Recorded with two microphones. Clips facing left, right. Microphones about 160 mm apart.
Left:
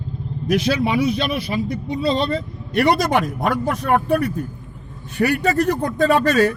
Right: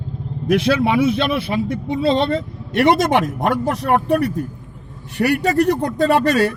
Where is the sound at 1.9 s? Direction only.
60° right (ahead or behind).